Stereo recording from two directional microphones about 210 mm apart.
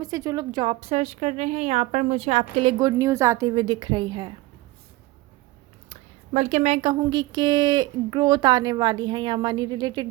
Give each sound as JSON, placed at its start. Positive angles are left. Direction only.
{"t": 0.0, "sound": "speech", "side_deg": -20}
{"t": 2.7, "sound": "speech", "side_deg": -15}
{"t": 6.3, "sound": "a woman's voice", "side_deg": -35}
{"t": 7.0, "sound": "speech", "side_deg": -20}